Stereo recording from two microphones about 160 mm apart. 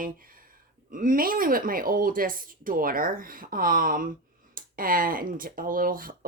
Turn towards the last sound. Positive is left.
turn(degrees=-60)  # may be behind; listen again after turning